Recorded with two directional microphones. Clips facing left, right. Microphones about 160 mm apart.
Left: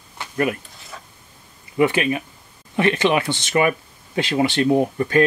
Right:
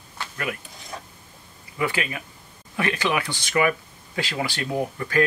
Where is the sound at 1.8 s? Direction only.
25° left (ahead or behind).